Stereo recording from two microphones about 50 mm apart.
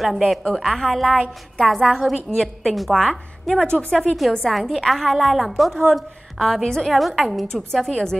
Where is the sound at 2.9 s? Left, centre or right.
Centre.